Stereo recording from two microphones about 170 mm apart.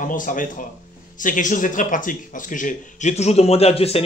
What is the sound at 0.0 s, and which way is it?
Speech, 50° left (ahead or behind).